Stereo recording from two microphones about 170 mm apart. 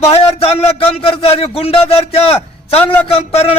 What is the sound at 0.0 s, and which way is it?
A man's voice, 35° left (ahead or behind).